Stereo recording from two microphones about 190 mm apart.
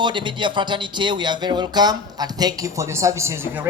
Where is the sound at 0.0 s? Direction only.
25° right (ahead or behind).